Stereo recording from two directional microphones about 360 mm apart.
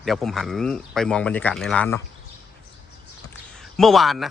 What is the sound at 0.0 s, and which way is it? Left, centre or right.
Speech, centre.